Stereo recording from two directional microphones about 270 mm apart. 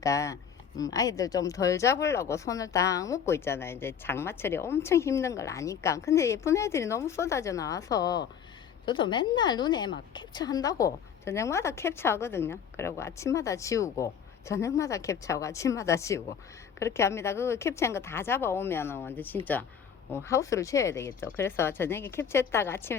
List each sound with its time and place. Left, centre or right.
0.0 s speech: centre